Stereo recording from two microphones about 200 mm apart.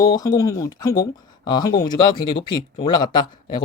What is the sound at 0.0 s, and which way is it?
Speech, 20° left (ahead or behind).